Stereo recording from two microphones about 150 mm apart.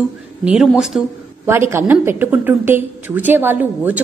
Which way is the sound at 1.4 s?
15° right (ahead or behind).